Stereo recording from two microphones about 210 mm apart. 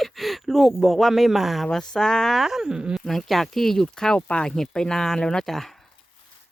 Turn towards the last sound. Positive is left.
turn(degrees=0)  # may be behind; listen again after turning